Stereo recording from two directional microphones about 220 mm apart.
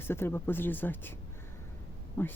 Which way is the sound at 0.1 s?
10° left (ahead or behind).